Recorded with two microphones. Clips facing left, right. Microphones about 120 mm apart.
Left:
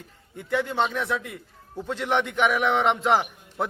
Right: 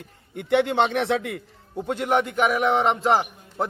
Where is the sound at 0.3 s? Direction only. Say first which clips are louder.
Right 5 dB; 70° right (ahead or behind); by 1.4 s 90° right.